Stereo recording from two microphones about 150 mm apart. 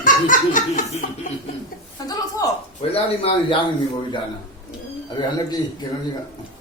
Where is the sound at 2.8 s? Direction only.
40° left (ahead or behind).